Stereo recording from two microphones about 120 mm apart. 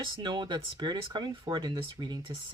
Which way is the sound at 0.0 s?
40° right (ahead or behind).